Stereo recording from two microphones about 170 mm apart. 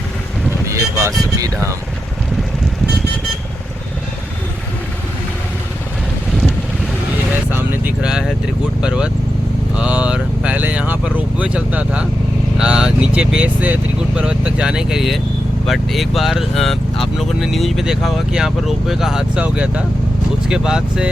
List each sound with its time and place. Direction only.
0.7 s vehicle: 15° right (ahead or behind)
1.4 s speech: 20° right (ahead or behind)
7.5 s vehicle: 10° right (ahead or behind)
8.8 s speech: 5° right (ahead or behind)
9.7 s vehicle: 5° right (ahead or behind)
11.3 s speech: 5° right (ahead or behind)